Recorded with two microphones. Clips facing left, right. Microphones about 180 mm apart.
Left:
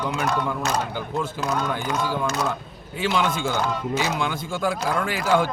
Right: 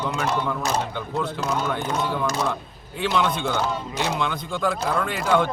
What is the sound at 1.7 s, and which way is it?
Speech, 5° left (ahead or behind).